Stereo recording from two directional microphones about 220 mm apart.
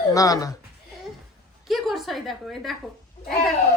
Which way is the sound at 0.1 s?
15° left (ahead or behind).